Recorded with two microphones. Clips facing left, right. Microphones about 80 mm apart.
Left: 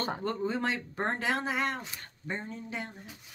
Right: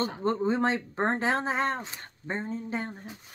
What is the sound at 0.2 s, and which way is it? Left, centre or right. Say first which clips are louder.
Speech: right 5 dB; right.